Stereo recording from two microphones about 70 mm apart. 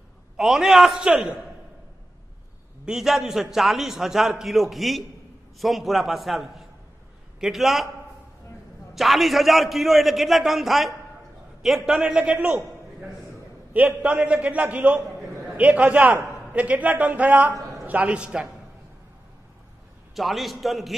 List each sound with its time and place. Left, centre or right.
0.4 s a man's voice: centre
2.8 s a man's voice: centre
8.9 s a man's voice: centre
14.0 s a man's voice: centre
20.2 s a man's voice: centre